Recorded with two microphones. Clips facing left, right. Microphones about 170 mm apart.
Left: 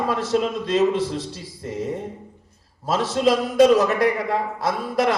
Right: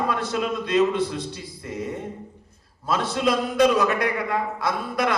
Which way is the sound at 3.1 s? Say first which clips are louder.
Left 5 dB; 30° left (ahead or behind).